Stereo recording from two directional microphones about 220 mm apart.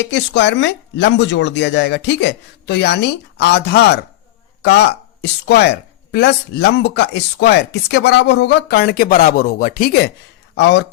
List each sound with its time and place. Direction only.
0.0 s a woman's voice: 55° left (ahead or behind)
10.6 s a woman's voice: 55° left (ahead or behind)